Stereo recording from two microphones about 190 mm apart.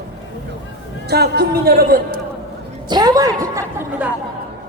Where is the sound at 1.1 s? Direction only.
60° right (ahead or behind).